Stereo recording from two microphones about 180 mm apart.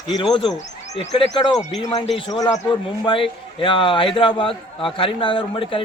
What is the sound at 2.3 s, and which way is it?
A man's voice, 20° left (ahead or behind).